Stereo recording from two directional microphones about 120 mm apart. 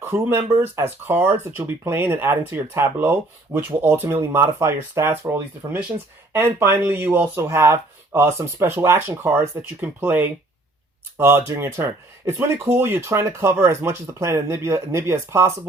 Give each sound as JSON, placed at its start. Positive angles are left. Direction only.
{"t": 0.0, "sound": "speech", "side_deg": -20}